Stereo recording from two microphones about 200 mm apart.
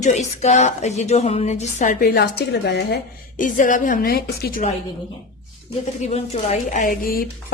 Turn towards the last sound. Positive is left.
turn(degrees=45)  # may be behind; listen again after turning